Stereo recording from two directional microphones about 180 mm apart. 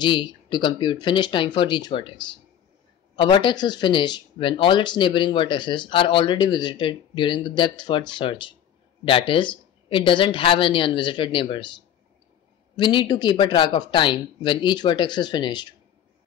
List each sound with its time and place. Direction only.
0.0 s speech: 25° left (ahead or behind)
3.2 s speech: 25° left (ahead or behind)